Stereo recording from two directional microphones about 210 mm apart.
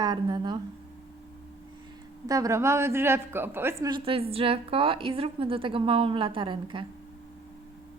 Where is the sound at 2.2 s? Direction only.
15° right (ahead or behind).